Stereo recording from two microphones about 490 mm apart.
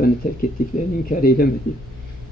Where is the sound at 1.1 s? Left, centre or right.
Centre.